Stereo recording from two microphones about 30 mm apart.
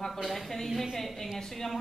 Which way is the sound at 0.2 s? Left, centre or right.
Centre.